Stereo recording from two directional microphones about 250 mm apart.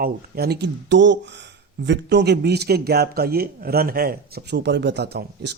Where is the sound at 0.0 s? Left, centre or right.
Right.